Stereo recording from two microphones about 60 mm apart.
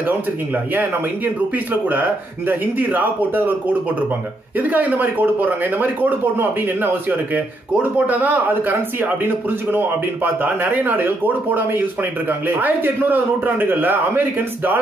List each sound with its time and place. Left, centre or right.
0.7 s speech: right
4.6 s a man's voice: right